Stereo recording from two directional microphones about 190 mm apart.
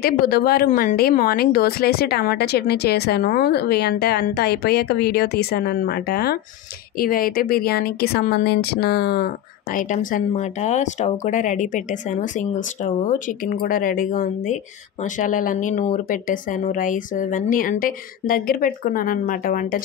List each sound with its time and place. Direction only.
0.0 s a woman's voice: 50° left (ahead or behind)